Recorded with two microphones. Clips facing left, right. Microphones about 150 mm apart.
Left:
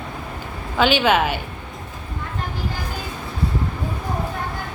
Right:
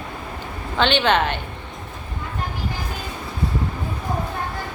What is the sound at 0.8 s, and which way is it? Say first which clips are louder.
Speech: left 1 dB; 5° left (ahead or behind).